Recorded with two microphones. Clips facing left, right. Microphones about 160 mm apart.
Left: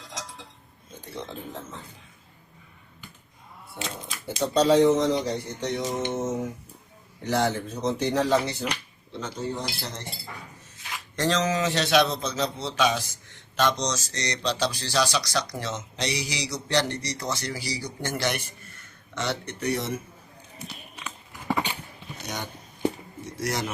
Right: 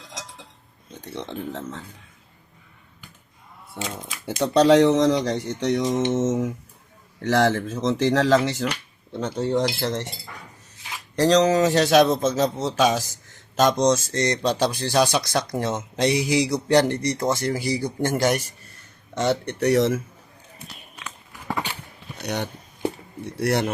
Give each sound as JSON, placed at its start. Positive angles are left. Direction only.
{"t": 4.3, "sound": "speech", "side_deg": -75}
{"t": 9.2, "sound": "cutlery", "side_deg": -75}
{"t": 11.2, "sound": "a man's voice", "side_deg": -35}
{"t": 19.5, "sound": "speech", "side_deg": -85}
{"t": 21.0, "sound": "horse", "side_deg": 10}
{"t": 22.2, "sound": "speech", "side_deg": -65}
{"t": 23.2, "sound": "a sound", "side_deg": -60}